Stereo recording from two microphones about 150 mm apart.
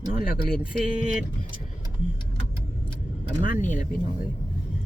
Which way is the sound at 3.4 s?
55° left (ahead or behind).